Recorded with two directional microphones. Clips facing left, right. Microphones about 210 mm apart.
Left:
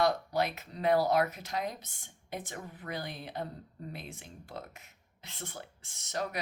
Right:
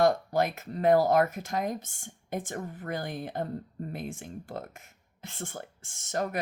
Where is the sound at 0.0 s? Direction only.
50° right (ahead or behind).